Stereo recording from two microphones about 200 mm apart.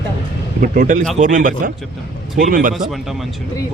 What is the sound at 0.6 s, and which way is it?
A man's voice, 40° right (ahead or behind).